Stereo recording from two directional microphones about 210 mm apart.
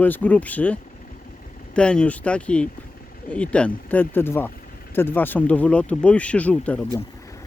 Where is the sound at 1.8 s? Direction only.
5° left (ahead or behind).